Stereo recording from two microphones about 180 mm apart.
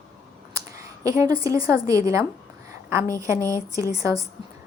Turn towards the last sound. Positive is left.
turn(degrees=-15)  # may be behind; listen again after turning